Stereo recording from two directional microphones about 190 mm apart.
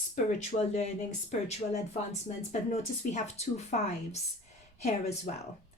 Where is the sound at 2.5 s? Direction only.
40° left (ahead or behind).